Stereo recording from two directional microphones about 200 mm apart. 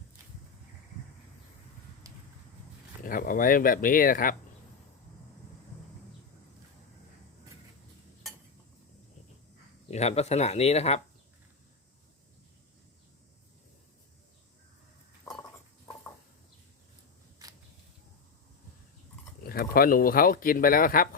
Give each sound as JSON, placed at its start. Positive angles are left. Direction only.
{"t": 2.0, "sound": "a sound", "side_deg": -15}
{"t": 3.0, "sound": "speech", "side_deg": 45}
{"t": 9.9, "sound": "speech", "side_deg": 35}
{"t": 19.4, "sound": "speech", "side_deg": 45}